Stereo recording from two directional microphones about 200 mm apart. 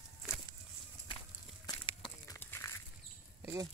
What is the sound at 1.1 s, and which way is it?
Walk, 25° left (ahead or behind).